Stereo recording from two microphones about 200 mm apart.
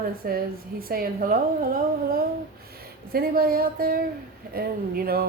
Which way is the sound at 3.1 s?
45° right (ahead or behind).